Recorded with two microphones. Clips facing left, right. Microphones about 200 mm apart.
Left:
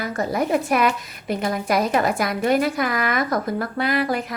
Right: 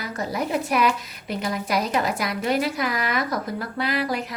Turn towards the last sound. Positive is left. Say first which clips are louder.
# left 3 dB
turn(degrees=55)  # may be behind; listen again after turning